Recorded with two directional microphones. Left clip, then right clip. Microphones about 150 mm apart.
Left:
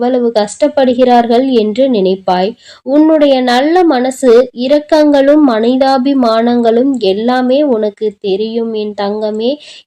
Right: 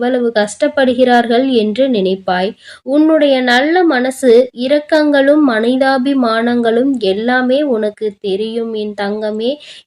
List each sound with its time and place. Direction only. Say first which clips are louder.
0.0 s a woman's voice: left 2 dB; 20° left (ahead or behind)